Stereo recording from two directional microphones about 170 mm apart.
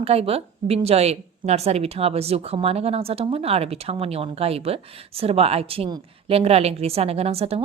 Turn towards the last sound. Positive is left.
turn(degrees=-35)  # may be behind; listen again after turning